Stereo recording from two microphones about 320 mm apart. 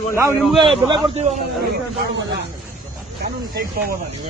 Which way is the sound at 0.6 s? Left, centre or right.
Centre.